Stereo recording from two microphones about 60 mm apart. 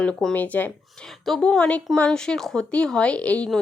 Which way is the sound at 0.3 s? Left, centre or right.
Left.